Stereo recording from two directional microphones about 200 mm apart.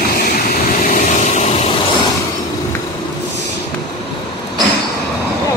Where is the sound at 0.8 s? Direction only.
40° left (ahead or behind).